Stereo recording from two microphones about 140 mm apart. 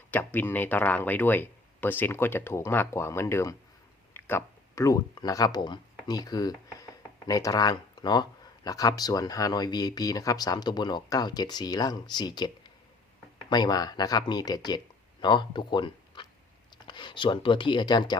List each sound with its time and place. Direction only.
0.1 s speech: 15° left (ahead or behind); by 18.2 s 30° left (ahead or behind)